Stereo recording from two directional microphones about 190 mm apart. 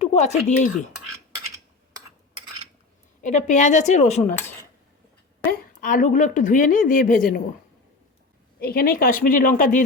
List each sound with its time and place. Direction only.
0.0 s speech: 35° left (ahead or behind)
3.2 s a woman's voice: 40° left (ahead or behind)
4.3 s speech: 10° left (ahead or behind)
5.5 s speech: 45° left (ahead or behind)
8.6 s speech: 50° left (ahead or behind)